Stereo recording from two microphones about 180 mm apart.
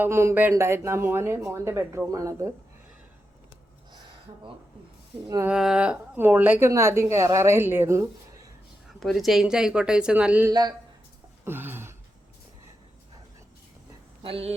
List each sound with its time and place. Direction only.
0.0 s a woman's voice: 15° right (ahead or behind)
5.3 s a woman's voice: 10° right (ahead or behind)
9.0 s speech: centre (ahead or behind)
10.5 s speech: 20° right (ahead or behind)
11.4 s a sound: 10° right (ahead or behind)
14.2 s speech: 30° right (ahead or behind)